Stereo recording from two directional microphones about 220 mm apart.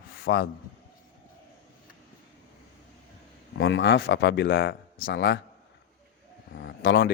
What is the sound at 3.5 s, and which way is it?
A man's voice, 60° left (ahead or behind).